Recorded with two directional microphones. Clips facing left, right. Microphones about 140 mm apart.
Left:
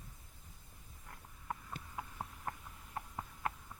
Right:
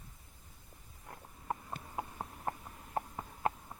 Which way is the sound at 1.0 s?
35° right (ahead or behind).